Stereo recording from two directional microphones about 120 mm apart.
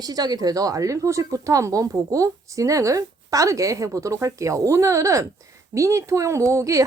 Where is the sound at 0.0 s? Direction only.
35° right (ahead or behind).